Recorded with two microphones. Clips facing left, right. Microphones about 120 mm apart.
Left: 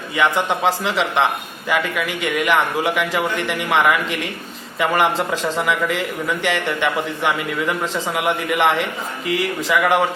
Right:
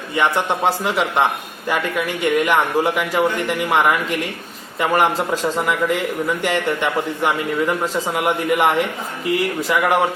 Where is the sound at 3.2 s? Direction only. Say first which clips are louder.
Right 3 dB; centre (ahead or behind).